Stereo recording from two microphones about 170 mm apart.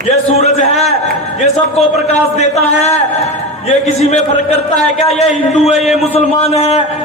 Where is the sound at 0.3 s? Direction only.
40° left (ahead or behind).